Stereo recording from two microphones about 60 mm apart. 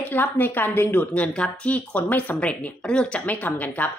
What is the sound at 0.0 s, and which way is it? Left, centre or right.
A woman's voice, left.